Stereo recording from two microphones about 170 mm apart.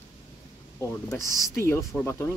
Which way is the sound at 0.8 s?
15° left (ahead or behind).